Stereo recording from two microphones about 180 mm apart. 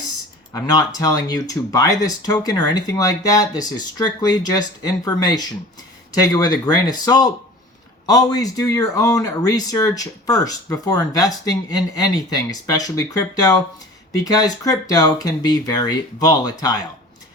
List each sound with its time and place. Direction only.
0.5 s speech: 20° left (ahead or behind)